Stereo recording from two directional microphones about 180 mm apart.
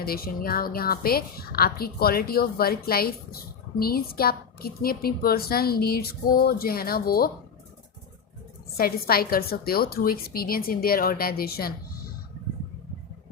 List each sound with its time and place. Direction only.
0.0 s a woman's voice: 55° left (ahead or behind)
8.8 s a woman's voice: 55° left (ahead or behind)